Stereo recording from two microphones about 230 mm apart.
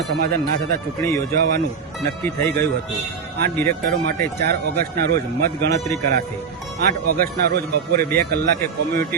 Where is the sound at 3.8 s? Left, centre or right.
Right.